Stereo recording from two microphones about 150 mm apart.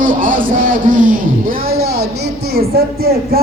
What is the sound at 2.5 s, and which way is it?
Speech, 90° right.